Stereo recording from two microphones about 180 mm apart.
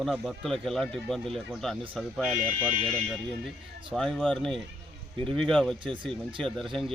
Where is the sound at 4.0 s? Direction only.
5° left (ahead or behind).